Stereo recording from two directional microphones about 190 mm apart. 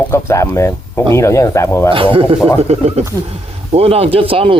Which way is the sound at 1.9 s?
30° right (ahead or behind).